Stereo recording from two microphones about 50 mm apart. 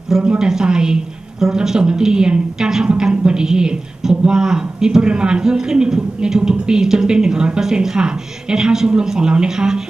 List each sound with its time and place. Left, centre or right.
0.2 s a woman's voice: right